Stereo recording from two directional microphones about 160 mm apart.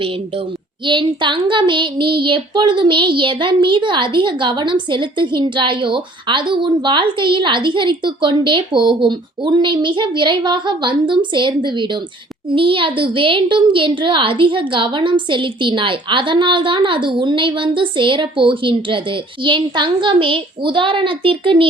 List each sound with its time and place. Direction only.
0.9 s speech: 30° right (ahead or behind)